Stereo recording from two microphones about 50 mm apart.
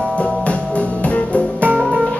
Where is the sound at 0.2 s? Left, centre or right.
Left.